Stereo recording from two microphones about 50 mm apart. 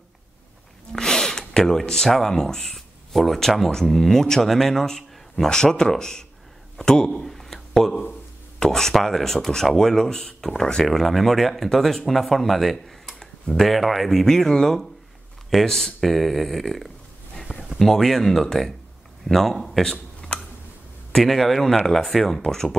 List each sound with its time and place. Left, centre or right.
0.9 s a sound: centre
1.6 s speech: centre
6.8 s a sound: centre
8.5 s speech: centre
10.9 s speech: centre
20.3 s tick: centre
21.1 s speech: centre